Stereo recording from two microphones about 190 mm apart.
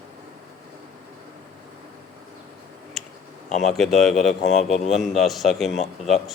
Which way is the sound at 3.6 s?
Centre (ahead or behind).